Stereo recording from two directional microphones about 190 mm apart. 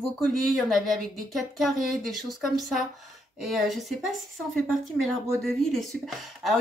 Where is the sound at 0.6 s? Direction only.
Centre (ahead or behind).